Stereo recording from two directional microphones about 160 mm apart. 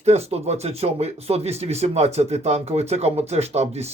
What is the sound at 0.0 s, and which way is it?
Speech, 40° right (ahead or behind).